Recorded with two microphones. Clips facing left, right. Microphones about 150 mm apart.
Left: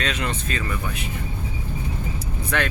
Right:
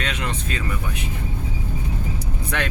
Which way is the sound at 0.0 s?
10° right (ahead or behind).